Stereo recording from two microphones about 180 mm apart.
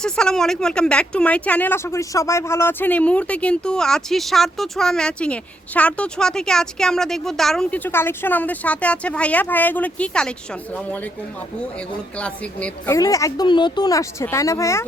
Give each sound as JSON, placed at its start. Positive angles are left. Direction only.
{"t": 0.0, "sound": "speech", "side_deg": 5}
{"t": 12.1, "sound": "speech", "side_deg": 5}